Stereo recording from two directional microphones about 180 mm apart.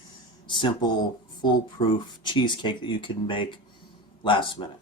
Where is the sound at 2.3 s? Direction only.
25° left (ahead or behind).